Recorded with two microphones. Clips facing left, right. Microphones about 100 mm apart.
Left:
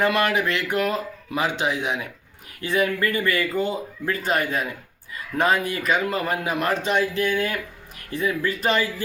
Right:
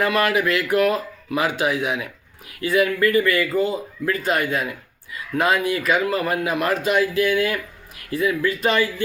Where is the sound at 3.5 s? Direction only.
5° right (ahead or behind).